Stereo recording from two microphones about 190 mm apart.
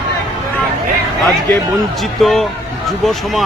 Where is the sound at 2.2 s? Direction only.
Centre (ahead or behind).